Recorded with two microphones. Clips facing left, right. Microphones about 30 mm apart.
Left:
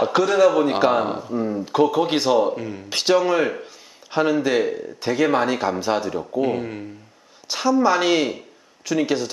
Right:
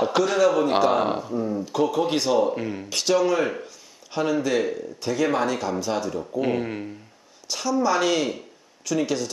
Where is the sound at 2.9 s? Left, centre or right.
Left.